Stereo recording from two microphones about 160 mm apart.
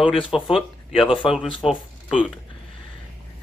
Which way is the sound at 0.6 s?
35° left (ahead or behind).